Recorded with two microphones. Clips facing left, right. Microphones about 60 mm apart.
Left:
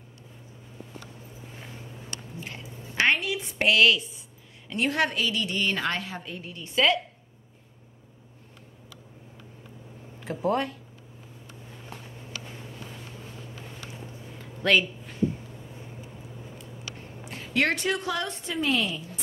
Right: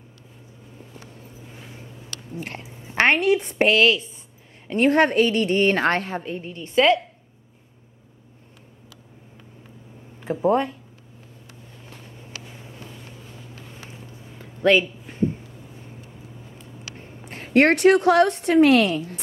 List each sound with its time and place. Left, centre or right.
2.9 s a woman's voice: right
3.5 s a woman's voice: right
6.2 s a woman's voice: right
10.2 s a woman's voice: right
12.4 s vehicle: centre
14.6 s a sound: right
16.5 s vehicle: right
17.3 s a woman's voice: right